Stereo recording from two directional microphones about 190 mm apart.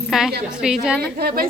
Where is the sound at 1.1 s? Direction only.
50° right (ahead or behind).